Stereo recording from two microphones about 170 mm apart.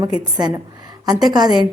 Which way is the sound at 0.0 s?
25° right (ahead or behind).